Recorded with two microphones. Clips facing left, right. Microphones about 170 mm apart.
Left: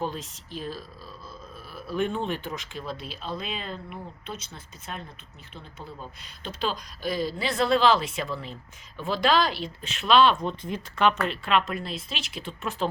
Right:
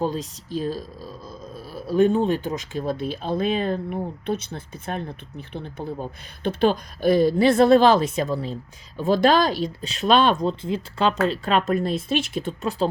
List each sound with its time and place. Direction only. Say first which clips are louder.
0.0 s speech: right 6 dB; 40° right (ahead or behind)
10.4 s speech: right 7 dB; 30° right (ahead or behind)
11.2 s speech: right 4 dB; 40° right (ahead or behind)